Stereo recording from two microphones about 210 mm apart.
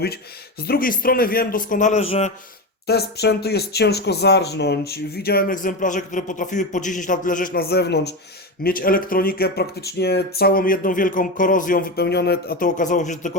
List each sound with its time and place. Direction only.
0.7 s a man's voice: 45° left (ahead or behind)
2.8 s speech: 50° left (ahead or behind)